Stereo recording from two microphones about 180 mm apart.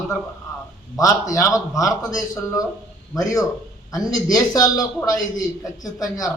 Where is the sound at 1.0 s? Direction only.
20° left (ahead or behind).